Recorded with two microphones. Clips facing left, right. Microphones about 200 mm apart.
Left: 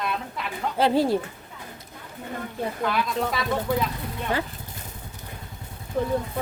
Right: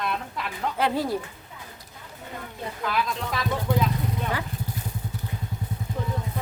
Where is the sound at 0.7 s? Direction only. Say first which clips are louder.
Left 5 dB; 30° left (ahead or behind).